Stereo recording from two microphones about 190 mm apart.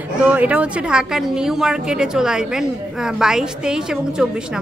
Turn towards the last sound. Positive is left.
turn(degrees=-5)  # may be behind; listen again after turning